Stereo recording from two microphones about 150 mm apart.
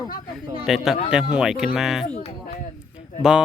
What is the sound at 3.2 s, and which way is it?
Speech, 5° right (ahead or behind).